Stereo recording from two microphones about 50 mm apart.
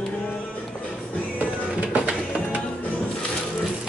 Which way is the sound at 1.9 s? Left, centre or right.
Right.